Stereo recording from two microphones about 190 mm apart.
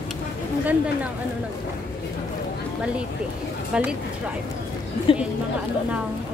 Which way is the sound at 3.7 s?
5° right (ahead or behind).